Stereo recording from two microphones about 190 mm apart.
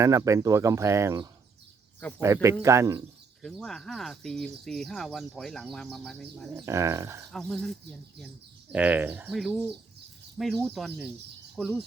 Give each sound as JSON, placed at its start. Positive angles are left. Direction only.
{"t": 0.0, "sound": "speech", "side_deg": -15}
{"t": 2.0, "sound": "speech", "side_deg": 5}
{"t": 2.2, "sound": "speech", "side_deg": -15}
{"t": 3.4, "sound": "speech", "side_deg": 0}
{"t": 6.7, "sound": "speech", "side_deg": -15}
{"t": 7.3, "sound": "speech", "side_deg": 5}